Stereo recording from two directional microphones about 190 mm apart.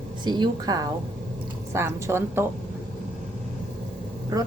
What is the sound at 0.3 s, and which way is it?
A woman's voice, 20° right (ahead or behind).